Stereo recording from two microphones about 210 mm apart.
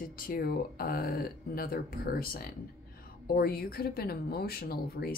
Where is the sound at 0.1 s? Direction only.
45° left (ahead or behind).